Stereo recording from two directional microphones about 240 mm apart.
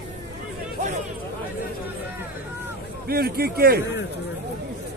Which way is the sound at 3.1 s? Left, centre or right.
Right.